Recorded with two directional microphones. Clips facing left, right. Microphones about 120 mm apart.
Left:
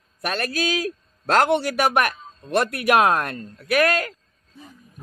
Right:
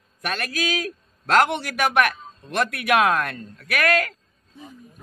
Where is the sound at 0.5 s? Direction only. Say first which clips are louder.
Left 2 dB; 35° left (ahead or behind).